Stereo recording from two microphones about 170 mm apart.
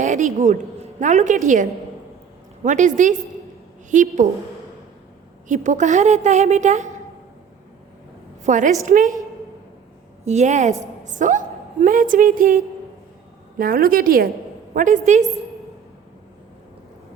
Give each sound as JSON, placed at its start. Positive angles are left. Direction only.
{"t": 0.0, "sound": "a woman's voice", "side_deg": -45}
{"t": 2.6, "sound": "a woman's voice", "side_deg": -45}
{"t": 5.5, "sound": "a woman's voice", "side_deg": -45}
{"t": 8.4, "sound": "a woman's voice", "side_deg": -50}
{"t": 10.2, "sound": "a woman's voice", "side_deg": -40}